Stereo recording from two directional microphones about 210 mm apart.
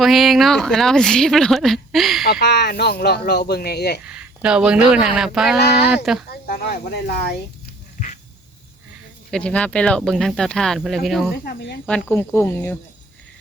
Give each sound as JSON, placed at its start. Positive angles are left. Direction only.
{"t": 0.0, "sound": "speech", "side_deg": 0}
{"t": 2.2, "sound": "speech", "side_deg": 50}
{"t": 4.0, "sound": "speech", "side_deg": -5}
{"t": 6.5, "sound": "speech", "side_deg": 50}
{"t": 7.9, "sound": "a sound", "side_deg": 35}
{"t": 9.3, "sound": "speech", "side_deg": 5}
{"t": 11.4, "sound": "speech", "side_deg": 50}
{"t": 11.9, "sound": "speech", "side_deg": 5}